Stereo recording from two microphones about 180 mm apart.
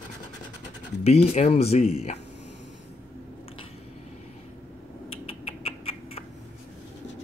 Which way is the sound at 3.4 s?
30° left (ahead or behind).